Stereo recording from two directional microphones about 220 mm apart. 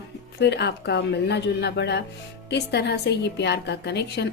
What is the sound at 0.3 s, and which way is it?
A woman's voice, 50° left (ahead or behind).